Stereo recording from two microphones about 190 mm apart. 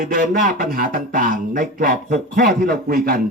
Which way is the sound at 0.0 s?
50° right (ahead or behind).